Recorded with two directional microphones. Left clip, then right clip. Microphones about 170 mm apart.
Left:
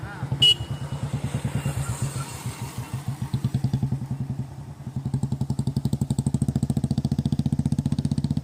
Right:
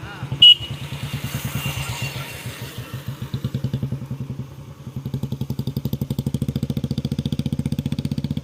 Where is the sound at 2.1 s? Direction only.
90° left; by 3.8 s 50° left (ahead or behind).